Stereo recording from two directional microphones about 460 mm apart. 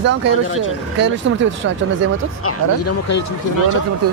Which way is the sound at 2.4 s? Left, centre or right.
Left.